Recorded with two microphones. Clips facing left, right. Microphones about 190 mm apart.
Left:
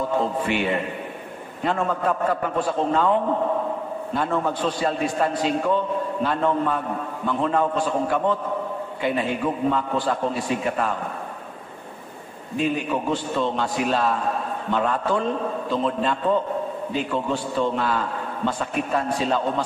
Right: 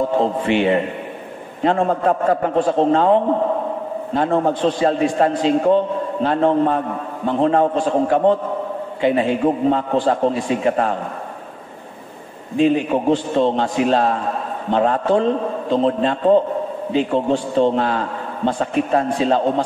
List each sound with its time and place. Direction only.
0.2 s a man's voice: 30° right (ahead or behind)
12.5 s a man's voice: 25° right (ahead or behind)